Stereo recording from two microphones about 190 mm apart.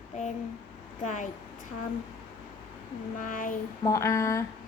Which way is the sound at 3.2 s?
45° left (ahead or behind).